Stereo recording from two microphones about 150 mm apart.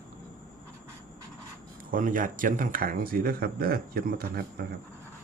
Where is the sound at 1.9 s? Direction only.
65° right (ahead or behind); by 4.6 s 90° right.